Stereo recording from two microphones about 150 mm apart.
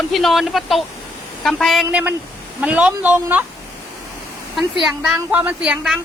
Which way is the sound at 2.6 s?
10° right (ahead or behind).